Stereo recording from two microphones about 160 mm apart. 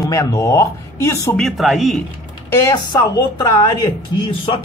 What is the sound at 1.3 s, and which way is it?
Speech, centre (ahead or behind).